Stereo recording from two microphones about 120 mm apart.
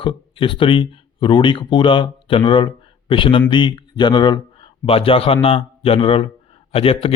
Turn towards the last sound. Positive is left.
turn(degrees=50)  # may be behind; listen again after turning